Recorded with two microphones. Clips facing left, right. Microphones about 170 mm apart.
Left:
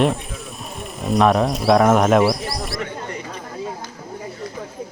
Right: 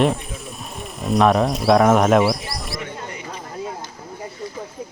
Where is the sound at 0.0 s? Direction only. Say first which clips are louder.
Even; centre (ahead or behind).